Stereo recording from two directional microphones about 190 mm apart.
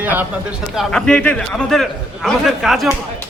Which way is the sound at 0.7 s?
5° left (ahead or behind).